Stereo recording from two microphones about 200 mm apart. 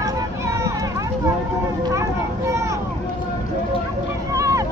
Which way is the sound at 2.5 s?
15° right (ahead or behind).